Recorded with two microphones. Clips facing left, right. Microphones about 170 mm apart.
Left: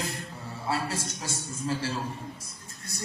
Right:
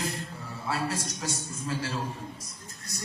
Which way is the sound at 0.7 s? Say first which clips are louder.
Even; 30° left (ahead or behind).